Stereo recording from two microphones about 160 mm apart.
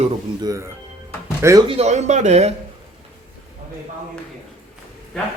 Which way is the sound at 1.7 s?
45° right (ahead or behind).